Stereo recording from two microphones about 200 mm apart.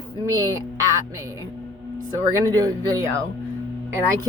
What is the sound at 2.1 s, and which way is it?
Speech, 15° right (ahead or behind).